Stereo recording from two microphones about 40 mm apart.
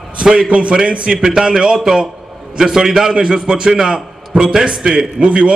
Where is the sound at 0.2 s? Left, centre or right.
Right.